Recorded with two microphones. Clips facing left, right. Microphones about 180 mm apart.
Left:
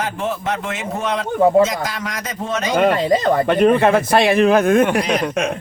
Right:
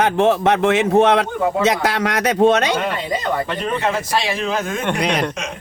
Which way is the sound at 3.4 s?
55° left (ahead or behind).